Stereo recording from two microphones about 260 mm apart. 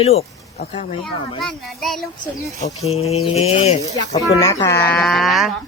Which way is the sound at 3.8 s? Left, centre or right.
Centre.